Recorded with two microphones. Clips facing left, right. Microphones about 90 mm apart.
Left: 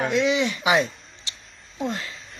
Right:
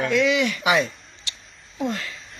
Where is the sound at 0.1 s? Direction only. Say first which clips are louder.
Right 1 dB; 20° left (ahead or behind).